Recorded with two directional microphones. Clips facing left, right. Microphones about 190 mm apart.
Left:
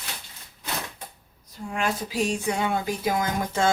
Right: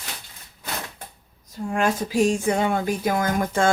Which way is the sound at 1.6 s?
45° right (ahead or behind).